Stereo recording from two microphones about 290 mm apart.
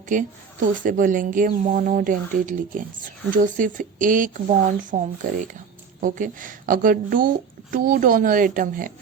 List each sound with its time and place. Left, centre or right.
0.1 s a woman's voice: right